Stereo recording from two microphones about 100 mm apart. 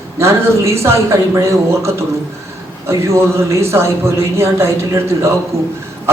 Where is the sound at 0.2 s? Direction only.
30° right (ahead or behind).